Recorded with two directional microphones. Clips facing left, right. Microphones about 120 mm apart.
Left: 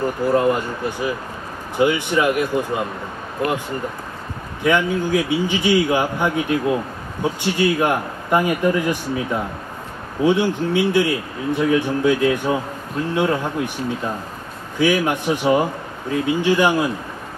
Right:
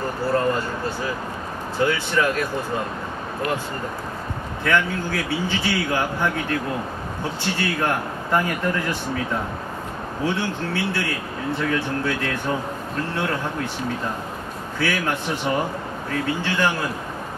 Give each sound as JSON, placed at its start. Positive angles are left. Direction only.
{"t": 0.3, "sound": "speech", "side_deg": 15}
{"t": 4.6, "sound": "speech", "side_deg": 15}
{"t": 14.8, "sound": "speech", "side_deg": 15}